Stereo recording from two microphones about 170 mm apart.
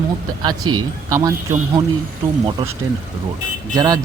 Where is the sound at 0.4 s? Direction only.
20° right (ahead or behind).